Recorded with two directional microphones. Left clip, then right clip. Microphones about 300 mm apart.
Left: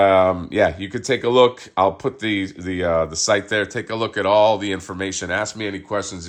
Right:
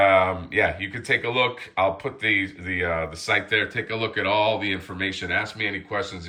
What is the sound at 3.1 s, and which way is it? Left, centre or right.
Speech, centre.